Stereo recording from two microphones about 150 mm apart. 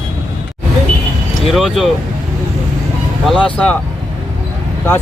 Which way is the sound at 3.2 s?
5° left (ahead or behind).